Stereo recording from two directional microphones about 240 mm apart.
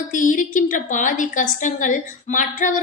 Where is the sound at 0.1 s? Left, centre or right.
Left.